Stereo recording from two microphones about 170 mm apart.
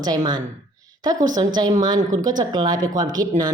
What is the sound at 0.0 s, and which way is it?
Speech, 25° right (ahead or behind).